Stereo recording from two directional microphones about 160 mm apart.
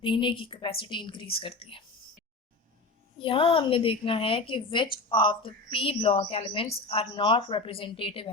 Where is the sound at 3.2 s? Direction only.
35° left (ahead or behind).